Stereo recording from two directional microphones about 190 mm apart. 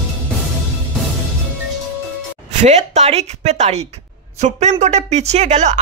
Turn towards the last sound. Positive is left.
turn(degrees=-40)  # may be behind; listen again after turning